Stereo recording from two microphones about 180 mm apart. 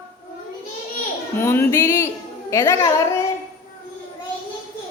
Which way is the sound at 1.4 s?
15° left (ahead or behind).